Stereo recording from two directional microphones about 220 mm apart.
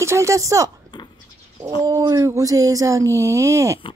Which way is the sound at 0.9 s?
20° left (ahead or behind).